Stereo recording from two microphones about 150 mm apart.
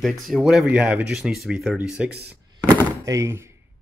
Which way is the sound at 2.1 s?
90° right.